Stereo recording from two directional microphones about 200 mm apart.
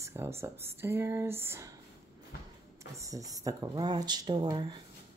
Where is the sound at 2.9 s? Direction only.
15° right (ahead or behind).